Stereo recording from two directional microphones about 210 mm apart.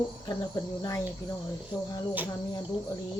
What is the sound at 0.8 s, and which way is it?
Cutlery, 15° left (ahead or behind).